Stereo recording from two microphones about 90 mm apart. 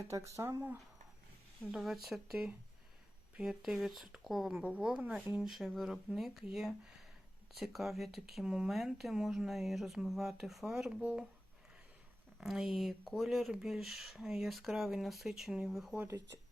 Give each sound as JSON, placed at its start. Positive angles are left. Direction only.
{"t": 0.0, "sound": "speech", "side_deg": -35}
{"t": 1.7, "sound": "speech", "side_deg": 0}
{"t": 12.4, "sound": "speech", "side_deg": -5}
{"t": 16.0, "sound": "speech", "side_deg": -30}